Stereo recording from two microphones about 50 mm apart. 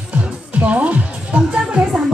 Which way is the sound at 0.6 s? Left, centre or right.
Right.